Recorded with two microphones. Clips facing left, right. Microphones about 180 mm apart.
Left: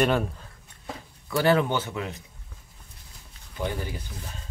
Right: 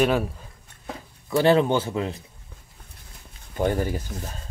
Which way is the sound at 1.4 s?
25° right (ahead or behind).